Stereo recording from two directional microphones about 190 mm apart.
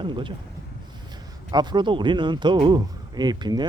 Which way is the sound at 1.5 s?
20° right (ahead or behind).